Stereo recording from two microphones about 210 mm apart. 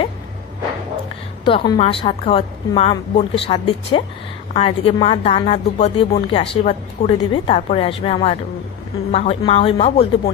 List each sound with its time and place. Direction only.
1.4 s a woman's voice: 25° left (ahead or behind)